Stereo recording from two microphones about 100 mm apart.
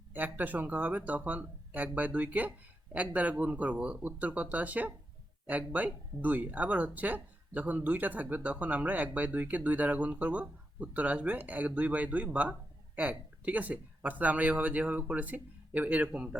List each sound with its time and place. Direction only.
0.1 s speech: 15° right (ahead or behind)